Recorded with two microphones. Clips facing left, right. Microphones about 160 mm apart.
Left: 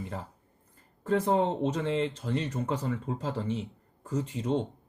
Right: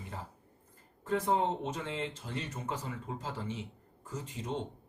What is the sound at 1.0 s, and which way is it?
Speech, 65° left (ahead or behind).